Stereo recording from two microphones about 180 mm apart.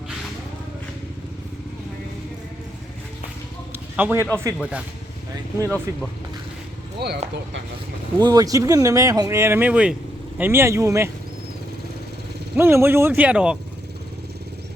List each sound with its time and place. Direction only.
3.9 s speech: 15° right (ahead or behind)
5.6 s speech: 10° left (ahead or behind)
7.0 s speech: 60° right (ahead or behind)
8.2 s speech: 20° right (ahead or behind)
12.5 s speech: 10° right (ahead or behind)